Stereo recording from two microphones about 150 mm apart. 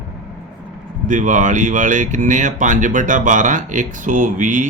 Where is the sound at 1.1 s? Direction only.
60° right (ahead or behind).